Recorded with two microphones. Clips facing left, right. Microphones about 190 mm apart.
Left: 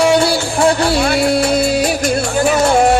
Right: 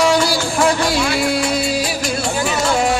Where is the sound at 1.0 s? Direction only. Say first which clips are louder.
Left 4 dB; 60° left (ahead or behind).